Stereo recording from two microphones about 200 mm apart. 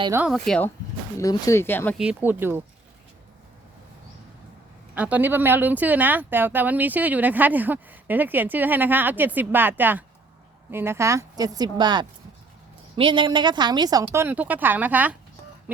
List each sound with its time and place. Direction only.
0.0 s speech: 15° right (ahead or behind)
0.3 s speech: centre (ahead or behind)
1.2 s speech: 15° left (ahead or behind)
2.0 s speech: 5° right (ahead or behind)
4.9 s speech: 5° right (ahead or behind)